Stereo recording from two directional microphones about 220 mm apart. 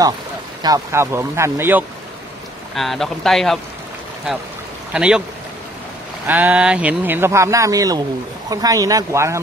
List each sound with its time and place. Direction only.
0.6 s speech: 15° right (ahead or behind); by 3.5 s centre (ahead or behind)
4.9 s speech: 5° right (ahead or behind)
6.2 s speech: 5° right (ahead or behind)